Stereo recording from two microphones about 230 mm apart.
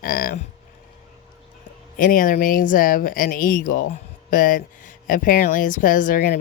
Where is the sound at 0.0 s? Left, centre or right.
Left.